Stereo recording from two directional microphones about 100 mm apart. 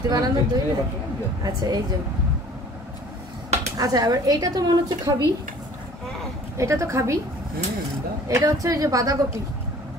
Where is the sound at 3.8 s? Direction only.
40° right (ahead or behind).